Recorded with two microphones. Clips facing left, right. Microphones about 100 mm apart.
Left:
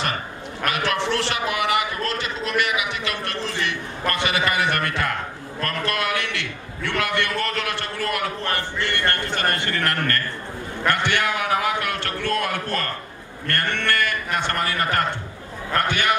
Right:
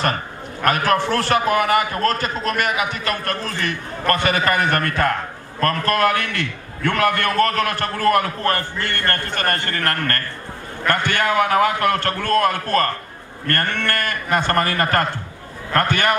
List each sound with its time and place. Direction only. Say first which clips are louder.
0.7 s a man's voice: right 5 dB; 45° right (ahead or behind)